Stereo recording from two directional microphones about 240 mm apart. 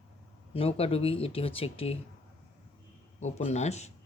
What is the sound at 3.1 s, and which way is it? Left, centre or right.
Speech, left.